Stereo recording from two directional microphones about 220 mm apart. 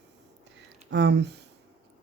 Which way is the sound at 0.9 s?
50° right (ahead or behind).